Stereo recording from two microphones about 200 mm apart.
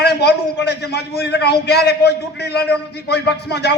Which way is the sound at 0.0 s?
55° left (ahead or behind).